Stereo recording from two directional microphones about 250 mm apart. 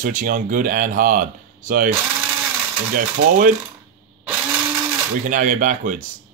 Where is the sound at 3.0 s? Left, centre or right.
Right.